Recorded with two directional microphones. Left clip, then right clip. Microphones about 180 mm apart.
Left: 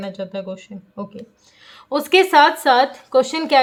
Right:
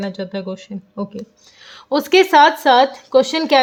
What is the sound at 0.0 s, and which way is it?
Speech, 35° right (ahead or behind).